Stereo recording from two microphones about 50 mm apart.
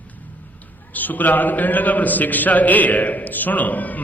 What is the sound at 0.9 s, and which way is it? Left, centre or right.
A man's voice, left.